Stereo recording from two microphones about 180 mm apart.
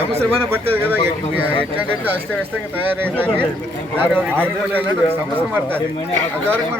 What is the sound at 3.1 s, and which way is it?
A man's voice, 10° right (ahead or behind).